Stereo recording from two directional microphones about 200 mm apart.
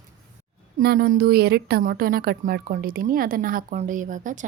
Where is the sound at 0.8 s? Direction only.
50° right (ahead or behind).